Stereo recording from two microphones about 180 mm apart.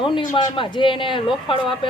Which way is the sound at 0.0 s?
25° left (ahead or behind).